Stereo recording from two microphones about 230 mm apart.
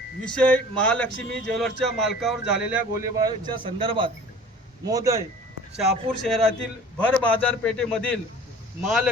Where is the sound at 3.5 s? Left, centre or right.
Right.